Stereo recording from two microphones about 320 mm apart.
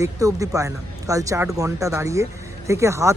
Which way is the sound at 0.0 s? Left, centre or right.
Centre.